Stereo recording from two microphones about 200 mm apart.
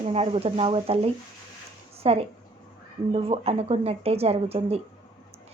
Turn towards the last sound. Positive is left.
turn(degrees=-30)  # may be behind; listen again after turning